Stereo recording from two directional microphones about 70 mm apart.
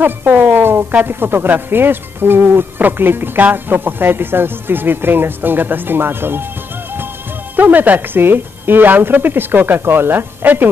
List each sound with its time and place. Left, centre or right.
0.0 s a woman's voice: right
7.5 s speech: right